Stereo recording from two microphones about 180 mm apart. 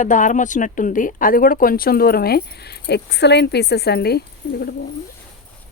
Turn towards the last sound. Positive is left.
turn(degrees=65)  # may be behind; listen again after turning